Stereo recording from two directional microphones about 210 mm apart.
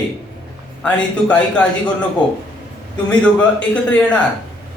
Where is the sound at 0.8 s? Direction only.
5° left (ahead or behind).